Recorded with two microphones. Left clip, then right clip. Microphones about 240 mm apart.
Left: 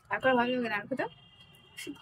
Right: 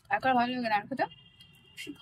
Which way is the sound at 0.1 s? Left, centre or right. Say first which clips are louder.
Even; centre.